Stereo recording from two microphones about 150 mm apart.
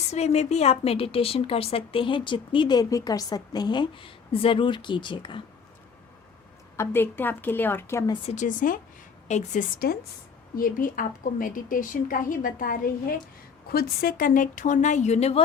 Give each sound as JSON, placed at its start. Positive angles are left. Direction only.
{"t": 0.1, "sound": "a woman's voice", "side_deg": 45}
{"t": 6.7, "sound": "a woman's voice", "side_deg": 15}
{"t": 8.3, "sound": "speech", "side_deg": 55}
{"t": 9.2, "sound": "speech", "side_deg": 50}
{"t": 10.5, "sound": "a woman's voice", "side_deg": 70}
{"t": 13.7, "sound": "speech", "side_deg": 90}